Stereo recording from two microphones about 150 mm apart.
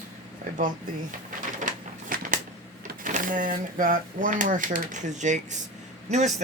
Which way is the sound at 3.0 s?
60° right (ahead or behind).